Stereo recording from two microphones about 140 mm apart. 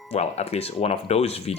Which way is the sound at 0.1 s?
50° left (ahead or behind).